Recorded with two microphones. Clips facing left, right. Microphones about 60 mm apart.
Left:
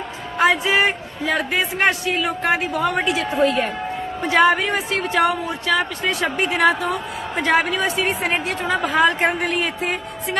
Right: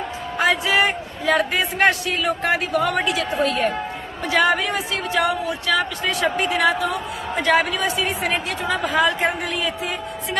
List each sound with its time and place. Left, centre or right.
0.3 s a woman's voice: left
2.0 s a woman's voice: centre; by 6.9 s left
7.4 s a woman's voice: left